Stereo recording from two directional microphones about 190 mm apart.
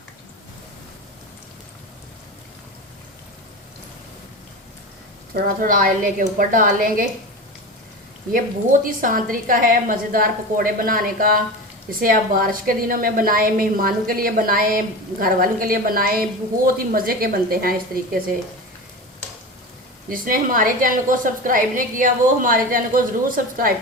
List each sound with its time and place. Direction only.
5.3 s a woman's voice: 45° right (ahead or behind)
8.3 s a woman's voice: 45° right (ahead or behind)
20.1 s a woman's voice: 45° right (ahead or behind)